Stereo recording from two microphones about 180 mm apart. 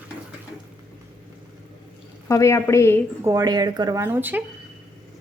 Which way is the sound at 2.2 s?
15° left (ahead or behind).